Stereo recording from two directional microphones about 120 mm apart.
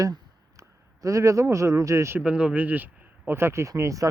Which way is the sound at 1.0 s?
25° right (ahead or behind).